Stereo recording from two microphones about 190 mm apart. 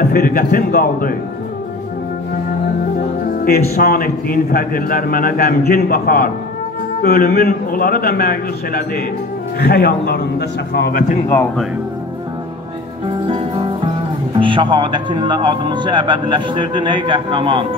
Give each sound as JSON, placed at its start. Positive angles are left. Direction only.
{"t": 0.1, "sound": "a man's voice", "side_deg": 50}
{"t": 3.4, "sound": "a man's voice", "side_deg": 55}
{"t": 14.3, "sound": "speech", "side_deg": -25}